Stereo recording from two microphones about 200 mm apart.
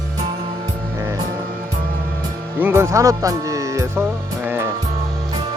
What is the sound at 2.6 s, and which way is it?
Speech, 15° right (ahead or behind).